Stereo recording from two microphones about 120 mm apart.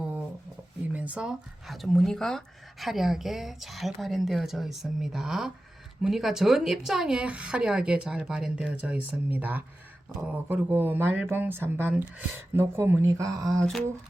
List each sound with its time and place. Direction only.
0.9 s speech: 10° right (ahead or behind); by 13.7 s 30° right (ahead or behind)